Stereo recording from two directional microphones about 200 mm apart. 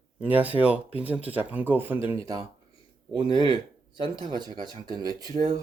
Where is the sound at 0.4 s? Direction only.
5° right (ahead or behind).